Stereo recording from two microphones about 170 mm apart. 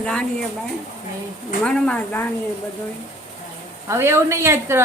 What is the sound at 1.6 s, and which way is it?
Speech, 5° left (ahead or behind).